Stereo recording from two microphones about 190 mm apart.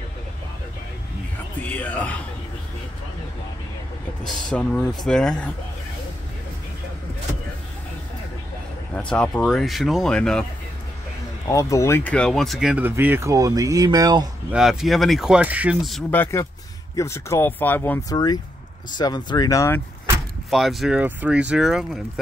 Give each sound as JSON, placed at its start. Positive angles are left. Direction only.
{"t": 1.6, "sound": "speech", "side_deg": 10}
{"t": 4.3, "sound": "speech", "side_deg": 5}
{"t": 8.9, "sound": "speech", "side_deg": 5}
{"t": 11.4, "sound": "speech", "side_deg": 15}
{"t": 14.5, "sound": "speech", "side_deg": 0}
{"t": 16.1, "sound": "speech", "side_deg": 10}
{"t": 18.1, "sound": "speech", "side_deg": 20}
{"t": 20.4, "sound": "speech", "side_deg": 0}